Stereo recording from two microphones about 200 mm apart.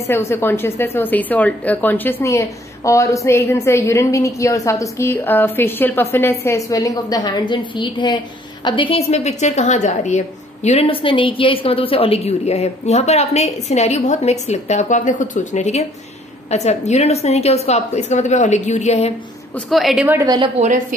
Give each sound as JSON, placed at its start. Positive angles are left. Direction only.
{"t": 0.1, "sound": "a woman's voice", "side_deg": 10}
{"t": 19.5, "sound": "a woman's voice", "side_deg": 0}
{"t": 20.2, "sound": "a woman's voice", "side_deg": -20}
{"t": 20.5, "sound": "a woman's voice", "side_deg": -35}